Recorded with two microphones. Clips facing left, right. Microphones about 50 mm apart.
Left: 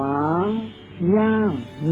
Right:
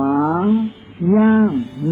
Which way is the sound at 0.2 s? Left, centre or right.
Centre.